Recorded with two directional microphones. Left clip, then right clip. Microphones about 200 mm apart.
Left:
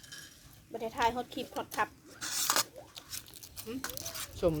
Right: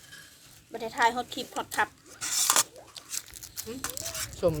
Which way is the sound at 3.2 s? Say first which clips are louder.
Right 7 dB; 20° right (ahead or behind).